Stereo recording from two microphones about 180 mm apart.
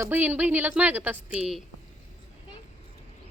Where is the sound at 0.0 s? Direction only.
10° right (ahead or behind).